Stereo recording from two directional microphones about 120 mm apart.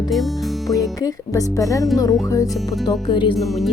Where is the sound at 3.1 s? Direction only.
40° left (ahead or behind).